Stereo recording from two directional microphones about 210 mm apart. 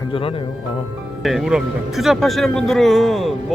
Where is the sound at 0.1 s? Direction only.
25° left (ahead or behind).